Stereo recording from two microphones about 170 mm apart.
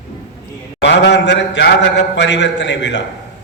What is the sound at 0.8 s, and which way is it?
A man's voice, 90° left.